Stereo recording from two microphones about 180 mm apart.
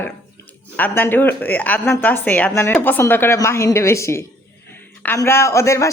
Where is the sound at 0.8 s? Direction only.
10° left (ahead or behind).